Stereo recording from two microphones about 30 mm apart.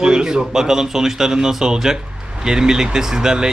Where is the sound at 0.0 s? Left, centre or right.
Right.